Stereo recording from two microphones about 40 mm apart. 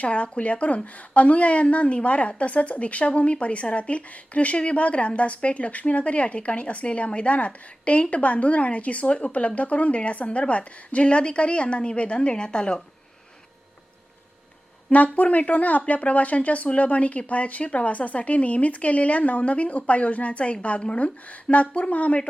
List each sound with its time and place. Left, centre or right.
0.0 s a woman's voice: left
14.8 s a woman's voice: left